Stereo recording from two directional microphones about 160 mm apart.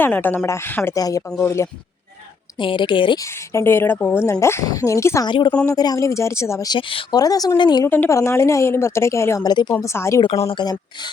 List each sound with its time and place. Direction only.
0.0 s a woman's voice: 10° left (ahead or behind)
2.6 s speech: 30° left (ahead or behind)
3.5 s a woman's voice: 15° left (ahead or behind)
5.3 s speech: 30° left (ahead or behind)
7.9 s a woman's voice: 10° left (ahead or behind)